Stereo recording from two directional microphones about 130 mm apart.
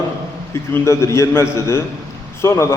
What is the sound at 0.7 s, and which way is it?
A man's voice, 20° left (ahead or behind).